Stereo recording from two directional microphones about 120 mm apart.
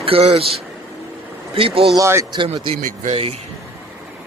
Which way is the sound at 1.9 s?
25° right (ahead or behind).